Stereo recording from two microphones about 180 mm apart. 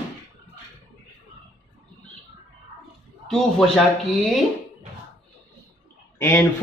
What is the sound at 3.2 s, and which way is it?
Speech, centre (ahead or behind).